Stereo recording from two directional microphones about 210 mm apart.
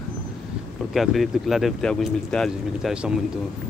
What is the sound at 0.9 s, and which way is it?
A man's voice, centre (ahead or behind).